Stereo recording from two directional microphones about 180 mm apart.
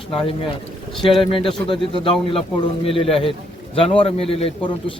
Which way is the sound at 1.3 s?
30° left (ahead or behind).